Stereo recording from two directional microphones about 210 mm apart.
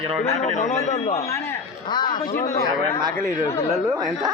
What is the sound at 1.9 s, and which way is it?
Speech, 20° left (ahead or behind).